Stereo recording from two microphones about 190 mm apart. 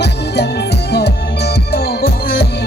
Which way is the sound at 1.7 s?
55° left (ahead or behind).